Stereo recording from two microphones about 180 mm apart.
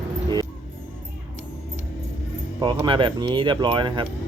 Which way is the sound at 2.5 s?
25° right (ahead or behind).